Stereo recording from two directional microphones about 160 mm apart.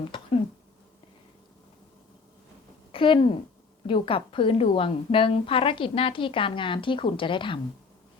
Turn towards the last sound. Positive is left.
turn(degrees=30)  # may be behind; listen again after turning